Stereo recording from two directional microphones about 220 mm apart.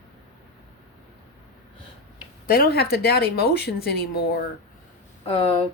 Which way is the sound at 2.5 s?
45° left (ahead or behind).